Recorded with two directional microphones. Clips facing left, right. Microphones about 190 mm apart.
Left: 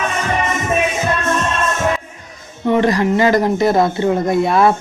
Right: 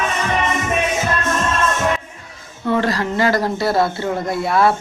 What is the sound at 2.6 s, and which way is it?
Speech, 20° left (ahead or behind).